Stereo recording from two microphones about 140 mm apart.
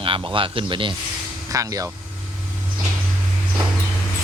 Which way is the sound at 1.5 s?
25° right (ahead or behind).